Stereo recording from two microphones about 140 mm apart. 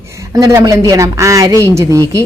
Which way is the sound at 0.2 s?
20° right (ahead or behind).